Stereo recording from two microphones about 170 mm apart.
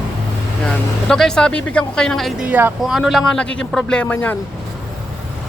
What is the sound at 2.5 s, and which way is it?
Speech, 10° right (ahead or behind).